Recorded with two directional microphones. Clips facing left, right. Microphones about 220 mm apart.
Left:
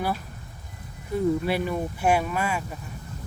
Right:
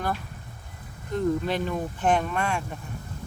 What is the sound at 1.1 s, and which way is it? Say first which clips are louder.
Speech: left 1 dB; 10° left (ahead or behind).